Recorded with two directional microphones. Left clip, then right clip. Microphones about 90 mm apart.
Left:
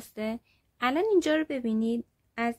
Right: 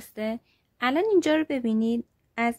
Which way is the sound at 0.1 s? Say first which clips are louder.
Right 3 dB; 25° right (ahead or behind).